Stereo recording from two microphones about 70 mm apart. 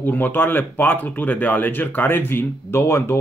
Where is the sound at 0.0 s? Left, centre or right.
Left.